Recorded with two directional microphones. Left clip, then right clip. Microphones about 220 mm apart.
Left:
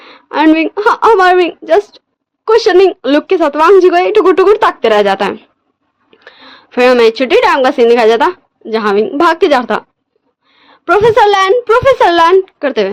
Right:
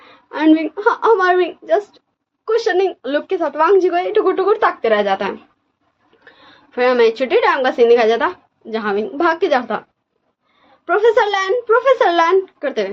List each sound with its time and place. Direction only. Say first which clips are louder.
0.1 s a woman's voice: left 5 dB; 50° left (ahead or behind)
10.8 s speech: left 7 dB; 50° left (ahead or behind)